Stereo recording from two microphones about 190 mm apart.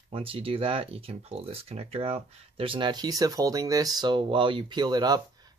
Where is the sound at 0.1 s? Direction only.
30° right (ahead or behind).